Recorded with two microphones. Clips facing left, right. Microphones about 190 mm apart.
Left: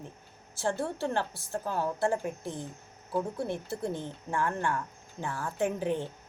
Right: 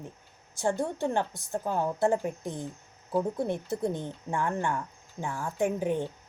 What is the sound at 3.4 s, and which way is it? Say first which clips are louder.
Speech: right 4 dB; 20° right (ahead or behind).